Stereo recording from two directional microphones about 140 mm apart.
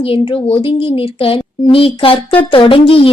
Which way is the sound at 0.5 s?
40° left (ahead or behind).